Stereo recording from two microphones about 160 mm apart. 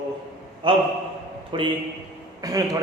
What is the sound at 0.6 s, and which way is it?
A man's voice, 35° right (ahead or behind).